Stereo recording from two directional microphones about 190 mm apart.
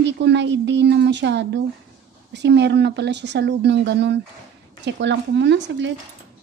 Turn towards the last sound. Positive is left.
turn(degrees=-65)  # may be behind; listen again after turning